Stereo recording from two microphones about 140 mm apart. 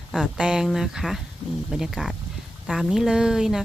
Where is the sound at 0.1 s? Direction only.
5° right (ahead or behind).